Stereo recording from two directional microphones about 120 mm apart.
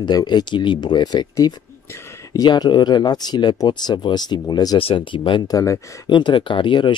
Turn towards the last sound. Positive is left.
turn(degrees=40)  # may be behind; listen again after turning